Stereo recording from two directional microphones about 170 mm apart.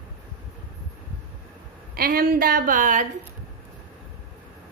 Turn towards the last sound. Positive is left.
turn(degrees=-50)  # may be behind; listen again after turning